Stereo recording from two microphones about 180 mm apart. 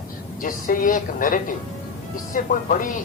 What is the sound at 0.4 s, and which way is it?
A man's voice, 50° left (ahead or behind).